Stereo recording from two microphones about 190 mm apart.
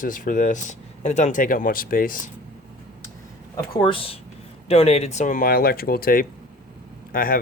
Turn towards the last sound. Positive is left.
turn(degrees=50)  # may be behind; listen again after turning